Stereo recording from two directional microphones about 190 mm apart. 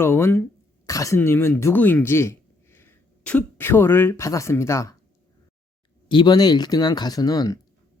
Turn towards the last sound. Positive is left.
turn(degrees=20)  # may be behind; listen again after turning